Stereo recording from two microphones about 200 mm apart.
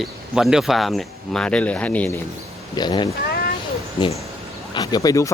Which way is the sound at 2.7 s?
20° left (ahead or behind).